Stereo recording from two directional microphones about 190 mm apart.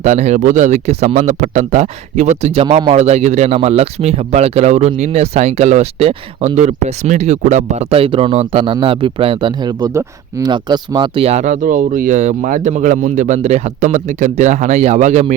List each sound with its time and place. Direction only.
0.0 s a man's voice: 35° right (ahead or behind)
2.6 s a man's voice: 25° right (ahead or behind)
2.9 s a man's voice: 35° right (ahead or behind)